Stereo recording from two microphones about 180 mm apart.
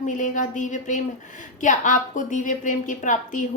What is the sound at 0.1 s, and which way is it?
A woman's voice, 45° left (ahead or behind).